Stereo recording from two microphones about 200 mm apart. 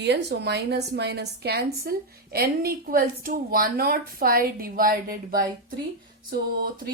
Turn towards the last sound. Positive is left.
turn(degrees=-45)  # may be behind; listen again after turning